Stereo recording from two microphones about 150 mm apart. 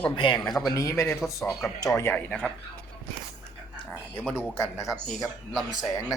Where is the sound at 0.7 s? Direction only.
20° left (ahead or behind).